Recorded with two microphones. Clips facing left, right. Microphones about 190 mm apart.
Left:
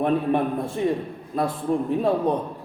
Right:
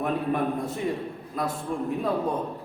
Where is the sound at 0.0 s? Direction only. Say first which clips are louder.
Left 5 dB; 30° left (ahead or behind).